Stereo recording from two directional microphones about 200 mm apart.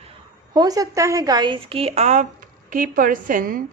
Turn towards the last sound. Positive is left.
turn(degrees=-45)  # may be behind; listen again after turning